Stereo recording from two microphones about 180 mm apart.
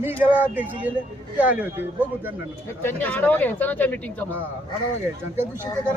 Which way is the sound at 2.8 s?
10° left (ahead or behind).